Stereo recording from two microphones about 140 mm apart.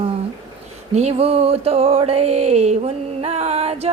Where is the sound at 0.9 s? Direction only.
45° right (ahead or behind).